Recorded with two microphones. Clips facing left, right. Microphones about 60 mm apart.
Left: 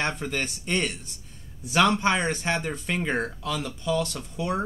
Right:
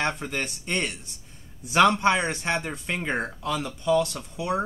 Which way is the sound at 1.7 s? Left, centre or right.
Centre.